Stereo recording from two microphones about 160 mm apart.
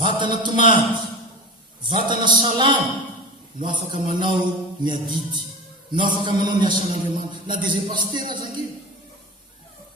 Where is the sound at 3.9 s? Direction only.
30° right (ahead or behind).